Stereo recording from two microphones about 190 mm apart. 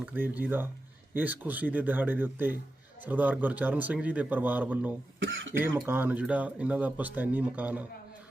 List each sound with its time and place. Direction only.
0.0 s speech: 10° right (ahead or behind)
5.2 s speech: 75° right (ahead or behind)
5.5 s speech: 10° right (ahead or behind)